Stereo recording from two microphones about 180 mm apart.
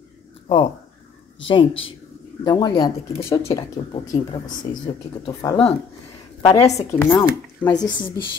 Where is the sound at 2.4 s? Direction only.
25° left (ahead or behind).